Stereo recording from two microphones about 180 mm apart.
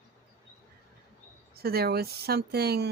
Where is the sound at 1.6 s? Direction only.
60° right (ahead or behind).